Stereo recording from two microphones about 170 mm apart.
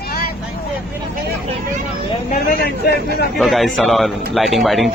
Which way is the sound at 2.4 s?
65° left (ahead or behind).